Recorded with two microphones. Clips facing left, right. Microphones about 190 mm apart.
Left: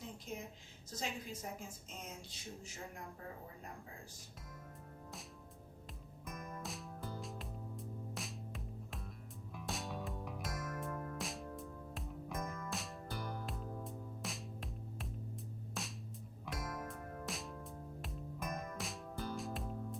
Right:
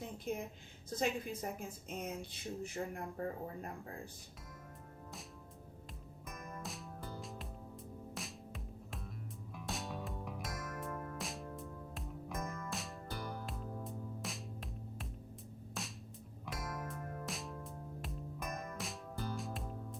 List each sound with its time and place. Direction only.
0.3 s a woman's voice: 55° right (ahead or behind)
6.2 s music: centre (ahead or behind)